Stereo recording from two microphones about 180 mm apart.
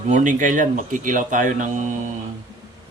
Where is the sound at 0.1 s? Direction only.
45° right (ahead or behind).